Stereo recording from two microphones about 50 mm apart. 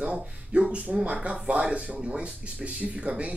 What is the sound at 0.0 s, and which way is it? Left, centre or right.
Speech, right.